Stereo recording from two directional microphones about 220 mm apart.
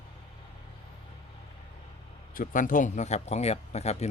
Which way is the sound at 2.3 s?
40° left (ahead or behind).